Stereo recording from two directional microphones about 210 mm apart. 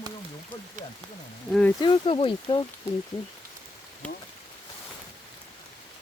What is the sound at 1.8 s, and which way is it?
Speech, 25° left (ahead or behind).